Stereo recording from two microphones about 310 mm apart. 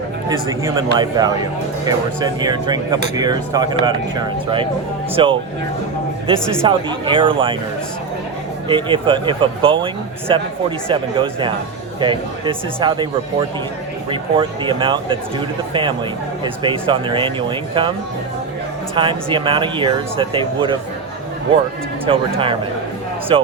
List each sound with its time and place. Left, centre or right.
0.3 s speech: centre
8.6 s speech: centre
14.1 s speech: centre
18.9 s speech: centre
22.1 s speech: centre
23.3 s speech: centre